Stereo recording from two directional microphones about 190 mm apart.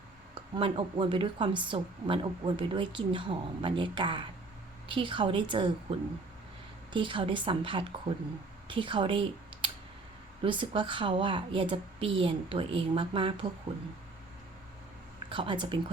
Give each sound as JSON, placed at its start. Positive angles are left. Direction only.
{"t": 0.3, "sound": "a woman's voice", "side_deg": -25}
{"t": 6.9, "sound": "a woman's voice", "side_deg": -25}
{"t": 15.3, "sound": "a woman's voice", "side_deg": -25}